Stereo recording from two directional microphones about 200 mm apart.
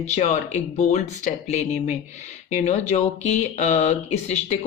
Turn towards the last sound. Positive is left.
turn(degrees=35)  # may be behind; listen again after turning